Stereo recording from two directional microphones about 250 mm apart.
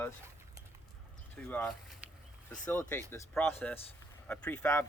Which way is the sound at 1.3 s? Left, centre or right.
Centre.